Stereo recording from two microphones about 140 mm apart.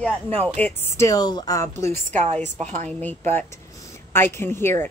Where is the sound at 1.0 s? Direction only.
30° left (ahead or behind).